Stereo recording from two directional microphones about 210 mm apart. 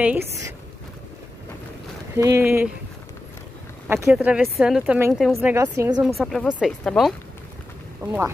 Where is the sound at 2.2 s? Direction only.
10° right (ahead or behind).